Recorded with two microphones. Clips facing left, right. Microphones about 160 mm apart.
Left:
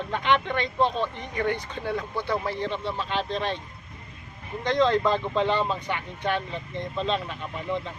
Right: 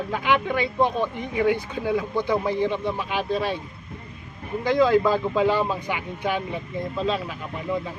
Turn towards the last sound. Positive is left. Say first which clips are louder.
# right 2 dB
turn(degrees=-5)  # may be behind; listen again after turning